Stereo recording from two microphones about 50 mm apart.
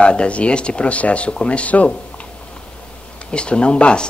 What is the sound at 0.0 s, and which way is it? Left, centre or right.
Speech, left.